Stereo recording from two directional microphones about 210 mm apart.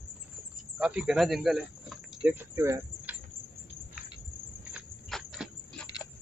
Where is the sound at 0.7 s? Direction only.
5° right (ahead or behind).